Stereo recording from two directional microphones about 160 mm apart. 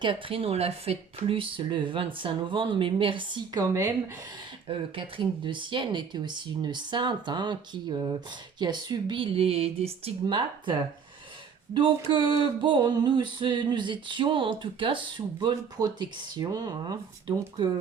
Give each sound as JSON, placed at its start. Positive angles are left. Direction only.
{"t": 0.0, "sound": "speech", "side_deg": -35}
{"t": 4.7, "sound": "music", "side_deg": -35}
{"t": 8.5, "sound": "speech", "side_deg": -25}
{"t": 11.7, "sound": "music", "side_deg": -30}